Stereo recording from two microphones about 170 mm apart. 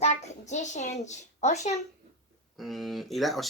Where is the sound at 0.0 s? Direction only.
40° left (ahead or behind).